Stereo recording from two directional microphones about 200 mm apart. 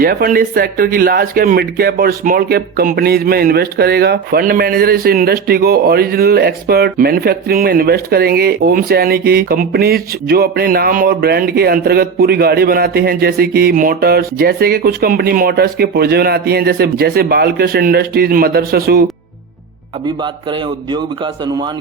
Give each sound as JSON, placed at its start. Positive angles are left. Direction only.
{"t": 0.0, "sound": "speech", "side_deg": -45}
{"t": 20.2, "sound": "speech", "side_deg": -25}